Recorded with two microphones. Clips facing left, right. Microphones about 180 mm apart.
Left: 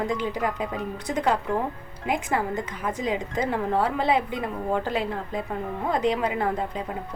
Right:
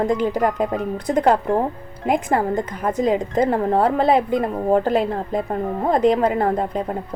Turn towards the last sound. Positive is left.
turn(degrees=-50)  # may be behind; listen again after turning